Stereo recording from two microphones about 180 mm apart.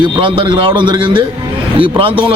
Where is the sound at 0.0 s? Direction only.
25° right (ahead or behind).